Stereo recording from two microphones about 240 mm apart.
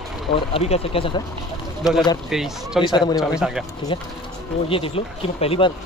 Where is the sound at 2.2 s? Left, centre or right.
Centre.